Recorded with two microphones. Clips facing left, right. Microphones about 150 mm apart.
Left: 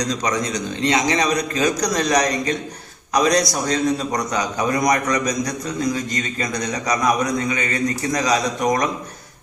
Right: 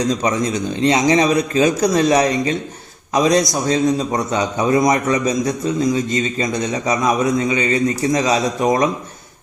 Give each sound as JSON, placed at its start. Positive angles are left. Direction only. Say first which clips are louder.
{"t": 0.0, "sound": "a man's voice", "louder": "right 4 dB", "side_deg": -25}